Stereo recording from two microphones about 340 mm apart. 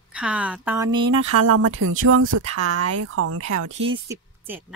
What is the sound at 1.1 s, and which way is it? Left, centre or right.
Speech, right.